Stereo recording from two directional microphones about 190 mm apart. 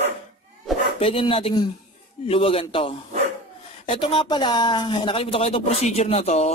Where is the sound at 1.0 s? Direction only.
30° left (ahead or behind).